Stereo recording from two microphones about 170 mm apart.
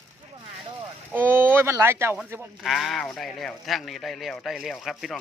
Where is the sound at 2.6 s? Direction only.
Centre (ahead or behind).